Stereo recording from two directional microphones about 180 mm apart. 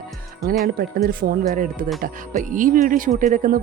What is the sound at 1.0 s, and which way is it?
Speech, 55° right (ahead or behind).